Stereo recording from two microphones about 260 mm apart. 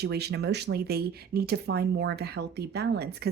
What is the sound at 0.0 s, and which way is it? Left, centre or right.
Speech, right.